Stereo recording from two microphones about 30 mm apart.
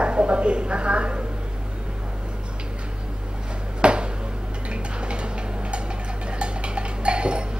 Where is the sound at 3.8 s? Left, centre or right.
Right.